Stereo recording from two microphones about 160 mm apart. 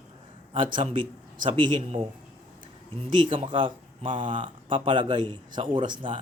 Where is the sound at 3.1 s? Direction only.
30° right (ahead or behind).